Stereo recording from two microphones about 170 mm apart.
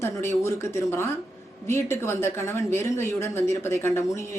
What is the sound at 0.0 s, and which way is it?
Speech, 15° left (ahead or behind).